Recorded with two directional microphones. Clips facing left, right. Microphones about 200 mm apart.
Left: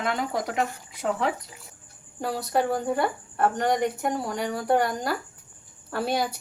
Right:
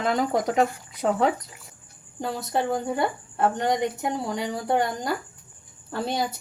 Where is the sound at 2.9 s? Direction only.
20° right (ahead or behind).